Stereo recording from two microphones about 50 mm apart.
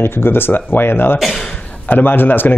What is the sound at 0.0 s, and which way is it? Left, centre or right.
Speech, left.